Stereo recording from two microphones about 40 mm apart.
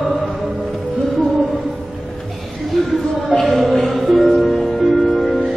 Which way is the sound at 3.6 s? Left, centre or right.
Centre.